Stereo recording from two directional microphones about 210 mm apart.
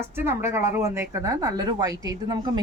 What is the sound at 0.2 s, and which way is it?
Speech, 10° right (ahead or behind).